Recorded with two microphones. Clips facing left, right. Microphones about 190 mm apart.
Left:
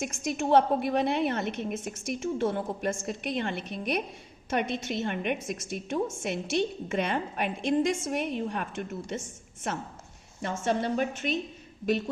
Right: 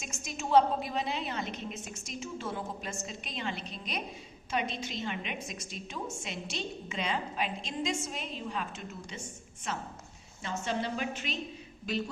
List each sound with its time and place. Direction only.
0.0 s a woman's voice: 60° left (ahead or behind)
10.4 s a woman's voice: 50° left (ahead or behind)